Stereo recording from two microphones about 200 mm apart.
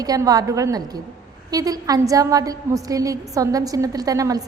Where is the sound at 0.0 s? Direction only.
20° right (ahead or behind).